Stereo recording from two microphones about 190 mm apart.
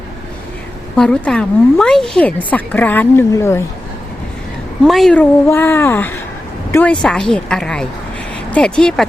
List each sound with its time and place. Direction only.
0.9 s speech: 5° left (ahead or behind)
4.9 s speech: centre (ahead or behind)